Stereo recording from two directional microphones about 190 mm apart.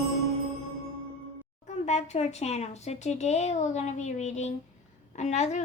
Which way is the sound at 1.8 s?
35° left (ahead or behind).